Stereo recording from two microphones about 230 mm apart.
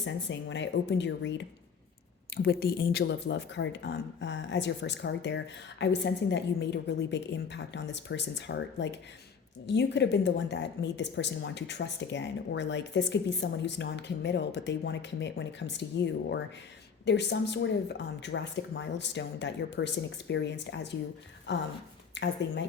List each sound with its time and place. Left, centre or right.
0.0 s speech: left